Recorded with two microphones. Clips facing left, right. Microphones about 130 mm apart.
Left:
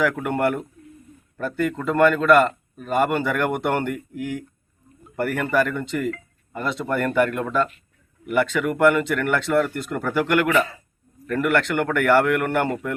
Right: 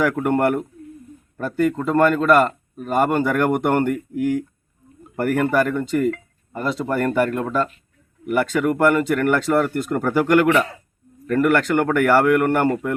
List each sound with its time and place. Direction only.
0.0 s speech: 45° right (ahead or behind)